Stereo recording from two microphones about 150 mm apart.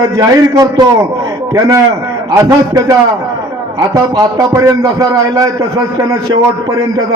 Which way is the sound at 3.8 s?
25° right (ahead or behind).